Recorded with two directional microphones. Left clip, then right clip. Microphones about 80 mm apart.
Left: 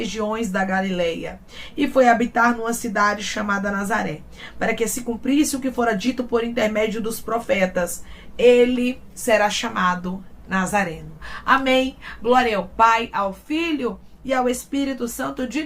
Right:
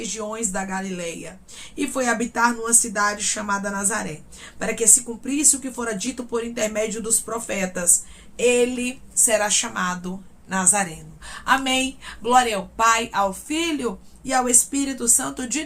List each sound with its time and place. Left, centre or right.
0.0 s speech: right